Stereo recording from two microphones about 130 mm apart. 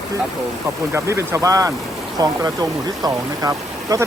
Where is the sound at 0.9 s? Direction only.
20° right (ahead or behind).